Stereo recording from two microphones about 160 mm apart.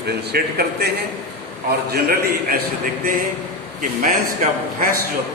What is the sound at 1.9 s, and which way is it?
Speech, 75° right (ahead or behind).